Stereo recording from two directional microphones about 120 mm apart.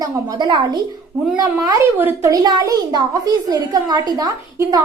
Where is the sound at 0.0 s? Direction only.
40° right (ahead or behind).